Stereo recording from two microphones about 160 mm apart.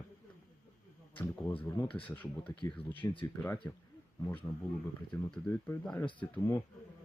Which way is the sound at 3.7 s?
20° left (ahead or behind).